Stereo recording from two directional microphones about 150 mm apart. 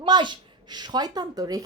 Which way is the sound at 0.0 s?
30° right (ahead or behind).